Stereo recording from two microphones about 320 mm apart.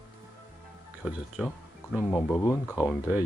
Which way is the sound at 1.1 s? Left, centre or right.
Centre.